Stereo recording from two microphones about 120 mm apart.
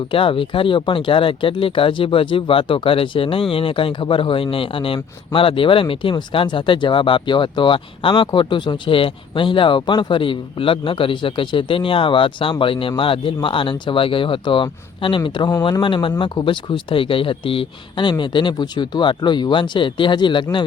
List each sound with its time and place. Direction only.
0.1 s speech: 45° left (ahead or behind)